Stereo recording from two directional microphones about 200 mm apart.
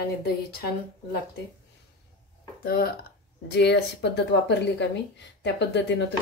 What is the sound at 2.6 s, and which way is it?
Speech, 50° left (ahead or behind).